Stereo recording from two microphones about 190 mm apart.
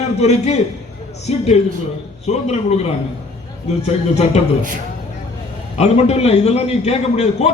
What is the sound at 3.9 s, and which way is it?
Speech, 35° left (ahead or behind).